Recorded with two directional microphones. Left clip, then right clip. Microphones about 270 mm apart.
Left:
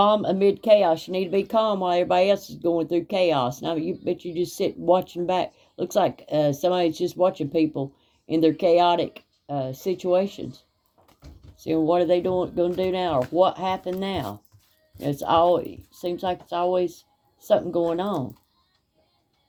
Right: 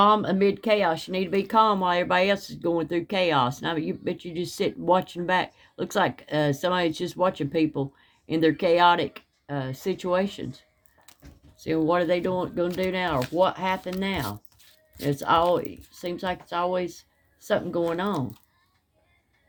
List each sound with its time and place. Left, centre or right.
0.0 s speech: right
11.6 s speech: right
12.7 s speech: right
13.3 s speech: right
15.0 s speech: right